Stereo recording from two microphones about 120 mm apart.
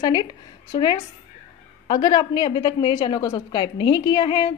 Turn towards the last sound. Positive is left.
turn(degrees=35)  # may be behind; listen again after turning